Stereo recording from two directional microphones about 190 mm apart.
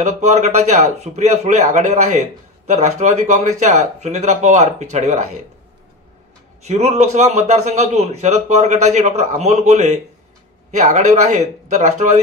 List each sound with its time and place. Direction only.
0.2 s a man's voice: 35° right (ahead or behind)
6.6 s a man's voice: 35° right (ahead or behind)